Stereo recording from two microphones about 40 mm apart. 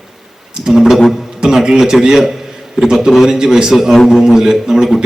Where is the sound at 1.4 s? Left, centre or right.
Centre.